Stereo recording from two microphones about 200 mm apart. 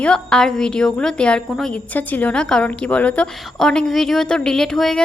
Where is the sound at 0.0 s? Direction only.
5° left (ahead or behind).